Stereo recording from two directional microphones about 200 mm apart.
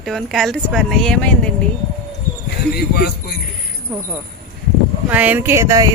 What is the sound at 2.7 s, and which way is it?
Speech, 50° left (ahead or behind).